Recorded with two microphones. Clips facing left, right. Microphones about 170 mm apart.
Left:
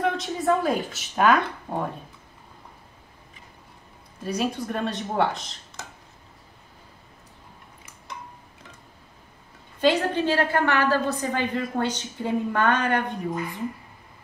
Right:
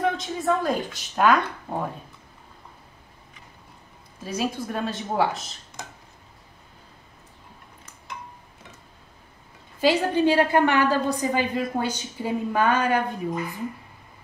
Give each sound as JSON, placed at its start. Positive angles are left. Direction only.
{"t": 0.0, "sound": "speech", "side_deg": 0}
{"t": 4.2, "sound": "speech", "side_deg": 0}
{"t": 5.8, "sound": "a sound", "side_deg": -15}
{"t": 9.8, "sound": "a woman's voice", "side_deg": -10}